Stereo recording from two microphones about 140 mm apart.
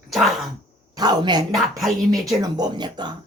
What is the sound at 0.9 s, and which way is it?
A man's voice, 30° right (ahead or behind).